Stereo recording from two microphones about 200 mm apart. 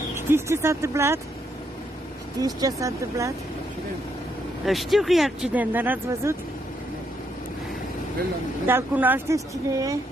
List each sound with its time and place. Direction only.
0.1 s a woman's voice: 15° right (ahead or behind)
2.4 s a woman's voice: 15° right (ahead or behind)
4.6 s speech: centre (ahead or behind)
8.6 s a woman's voice: 10° right (ahead or behind)